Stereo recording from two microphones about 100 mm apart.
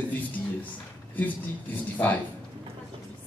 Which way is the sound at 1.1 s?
15° left (ahead or behind).